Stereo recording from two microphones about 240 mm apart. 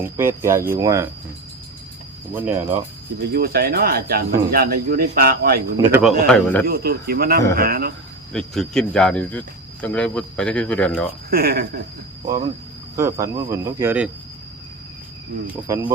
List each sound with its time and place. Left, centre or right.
0.0 s speech: centre
2.3 s speech: centre
3.2 s speech: right
5.7 s speech: centre
6.3 s speech: centre
6.7 s speech: right
8.3 s speech: centre
11.3 s speech: right
13.0 s speech: centre
15.6 s speech: centre